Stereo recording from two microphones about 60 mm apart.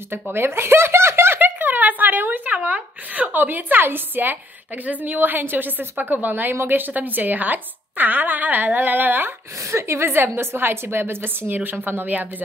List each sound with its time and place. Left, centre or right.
0.1 s a woman's voice: right
9.7 s a woman's voice: right